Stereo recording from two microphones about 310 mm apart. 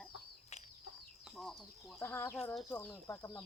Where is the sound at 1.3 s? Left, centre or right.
Centre.